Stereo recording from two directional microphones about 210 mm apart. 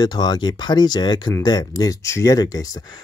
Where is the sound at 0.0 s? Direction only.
20° left (ahead or behind).